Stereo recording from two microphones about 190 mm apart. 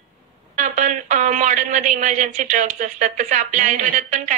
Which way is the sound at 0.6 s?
40° right (ahead or behind).